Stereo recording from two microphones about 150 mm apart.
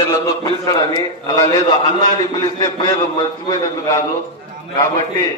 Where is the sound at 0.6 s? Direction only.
25° left (ahead or behind).